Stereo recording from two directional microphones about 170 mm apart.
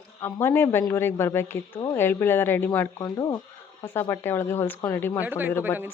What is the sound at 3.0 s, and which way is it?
Speech, 25° left (ahead or behind).